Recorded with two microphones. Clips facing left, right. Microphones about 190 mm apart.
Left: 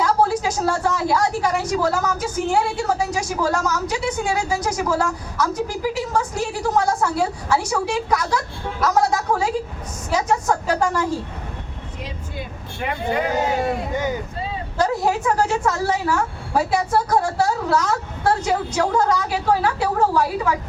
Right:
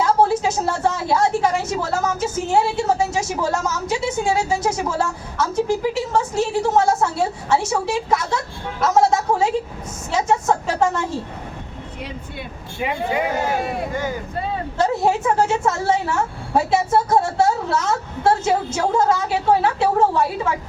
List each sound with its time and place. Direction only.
0.0 s a woman's voice: 25° right (ahead or behind)
14.8 s a woman's voice: 25° right (ahead or behind)